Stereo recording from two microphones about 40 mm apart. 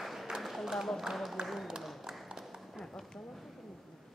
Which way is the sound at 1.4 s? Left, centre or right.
Centre.